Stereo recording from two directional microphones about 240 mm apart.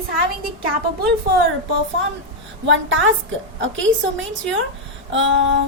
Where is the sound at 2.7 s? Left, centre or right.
Right.